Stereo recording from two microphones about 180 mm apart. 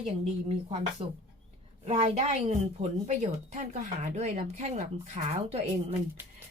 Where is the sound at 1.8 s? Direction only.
35° right (ahead or behind).